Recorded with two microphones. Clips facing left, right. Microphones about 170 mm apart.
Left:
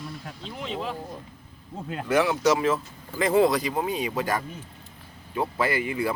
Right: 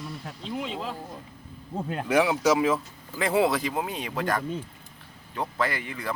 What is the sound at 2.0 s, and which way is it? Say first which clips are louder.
Speech: left 1 dB; 10° right (ahead or behind).